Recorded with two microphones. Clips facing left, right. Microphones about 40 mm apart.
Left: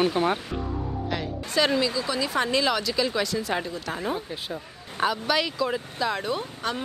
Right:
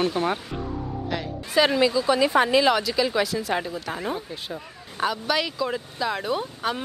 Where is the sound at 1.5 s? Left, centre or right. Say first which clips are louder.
Right 3 dB; centre.